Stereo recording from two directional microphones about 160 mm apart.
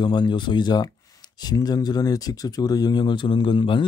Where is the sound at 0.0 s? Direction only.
30° left (ahead or behind).